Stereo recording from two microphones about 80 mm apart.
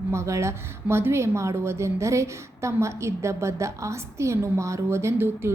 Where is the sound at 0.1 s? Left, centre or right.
Right.